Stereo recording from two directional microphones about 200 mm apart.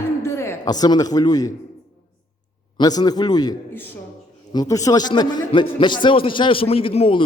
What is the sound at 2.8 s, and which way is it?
A man's voice, 20° left (ahead or behind).